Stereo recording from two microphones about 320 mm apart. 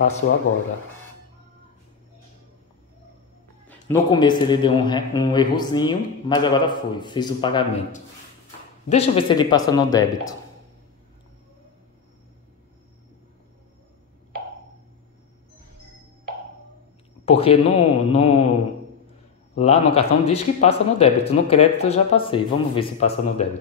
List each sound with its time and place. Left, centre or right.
3.9 s a man's voice: centre
17.2 s speech: centre